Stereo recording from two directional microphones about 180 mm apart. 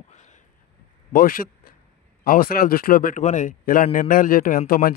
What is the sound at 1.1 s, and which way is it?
A man's voice, 50° left (ahead or behind).